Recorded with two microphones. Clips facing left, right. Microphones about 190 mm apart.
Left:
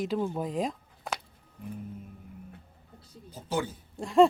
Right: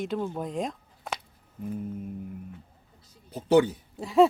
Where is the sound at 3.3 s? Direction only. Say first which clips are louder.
Right 11 dB; 65° right (ahead or behind).